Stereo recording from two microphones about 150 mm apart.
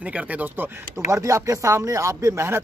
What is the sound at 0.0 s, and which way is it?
Speech, 10° right (ahead or behind).